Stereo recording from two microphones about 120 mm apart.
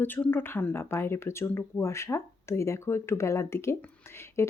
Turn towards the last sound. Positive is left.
turn(degrees=25)  # may be behind; listen again after turning